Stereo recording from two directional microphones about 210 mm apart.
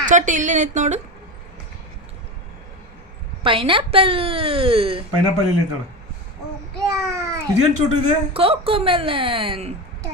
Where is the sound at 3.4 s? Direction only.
25° right (ahead or behind).